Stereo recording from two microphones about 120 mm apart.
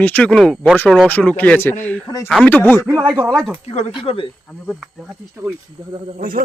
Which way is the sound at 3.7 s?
65° left (ahead or behind).